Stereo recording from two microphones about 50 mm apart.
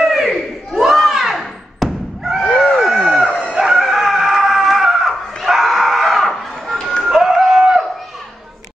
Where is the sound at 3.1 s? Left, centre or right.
Centre.